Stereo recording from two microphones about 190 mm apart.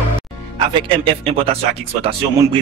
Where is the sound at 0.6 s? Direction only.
25° right (ahead or behind).